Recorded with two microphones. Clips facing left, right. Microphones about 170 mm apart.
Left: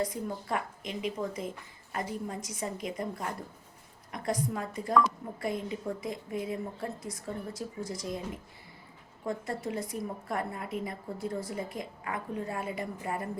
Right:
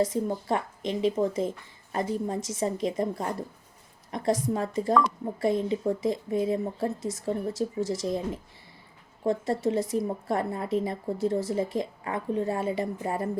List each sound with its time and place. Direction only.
0.0 s a woman's voice: 25° right (ahead or behind)
4.5 s a woman's voice: 30° right (ahead or behind)